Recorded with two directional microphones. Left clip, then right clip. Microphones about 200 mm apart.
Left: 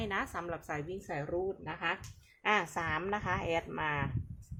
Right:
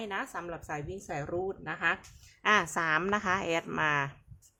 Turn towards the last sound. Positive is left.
turn(degrees=-20)  # may be behind; listen again after turning